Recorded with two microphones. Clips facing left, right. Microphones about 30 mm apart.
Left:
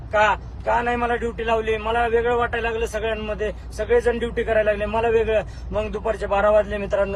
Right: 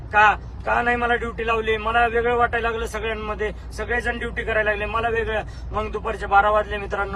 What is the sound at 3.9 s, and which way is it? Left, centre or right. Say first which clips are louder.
Speech: left 6 dB; right.